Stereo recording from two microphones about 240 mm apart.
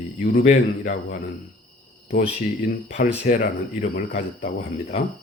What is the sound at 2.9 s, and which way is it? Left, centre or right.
Speech, left.